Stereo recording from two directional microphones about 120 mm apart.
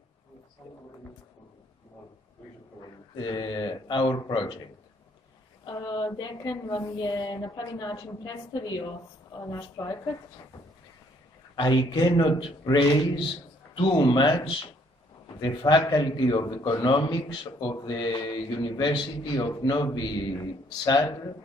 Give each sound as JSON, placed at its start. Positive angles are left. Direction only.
{"t": 3.2, "sound": "a man's voice", "side_deg": 40}
{"t": 5.7, "sound": "a man's voice", "side_deg": 40}
{"t": 11.5, "sound": "a man's voice", "side_deg": 40}